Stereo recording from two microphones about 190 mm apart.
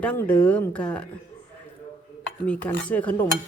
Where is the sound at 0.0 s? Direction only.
5° left (ahead or behind).